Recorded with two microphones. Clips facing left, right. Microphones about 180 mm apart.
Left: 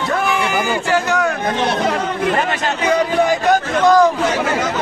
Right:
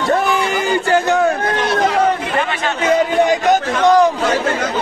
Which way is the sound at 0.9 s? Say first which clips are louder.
Right 3 dB; 30° right (ahead or behind).